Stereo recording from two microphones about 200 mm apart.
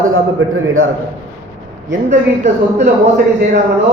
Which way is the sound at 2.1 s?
35° right (ahead or behind).